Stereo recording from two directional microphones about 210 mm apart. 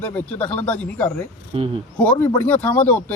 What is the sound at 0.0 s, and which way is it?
Speech, 5° left (ahead or behind).